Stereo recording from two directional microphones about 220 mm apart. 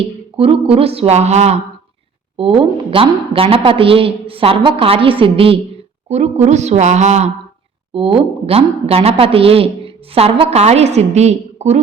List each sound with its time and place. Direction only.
0.0 s a woman's voice: 25° right (ahead or behind)